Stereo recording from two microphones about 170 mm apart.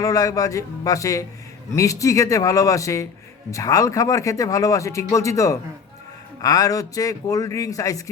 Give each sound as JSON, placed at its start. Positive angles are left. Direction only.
{"t": 0.0, "sound": "speech", "side_deg": 20}